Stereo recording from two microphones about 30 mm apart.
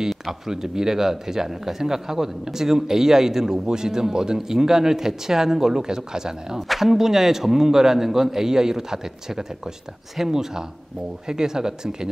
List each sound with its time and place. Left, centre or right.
0.5 s speech: centre